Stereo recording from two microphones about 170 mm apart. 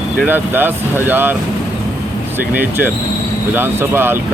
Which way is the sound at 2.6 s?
10° right (ahead or behind).